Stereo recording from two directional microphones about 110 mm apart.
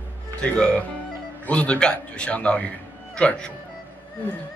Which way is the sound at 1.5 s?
10° left (ahead or behind).